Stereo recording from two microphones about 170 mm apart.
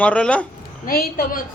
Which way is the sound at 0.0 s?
5° left (ahead or behind).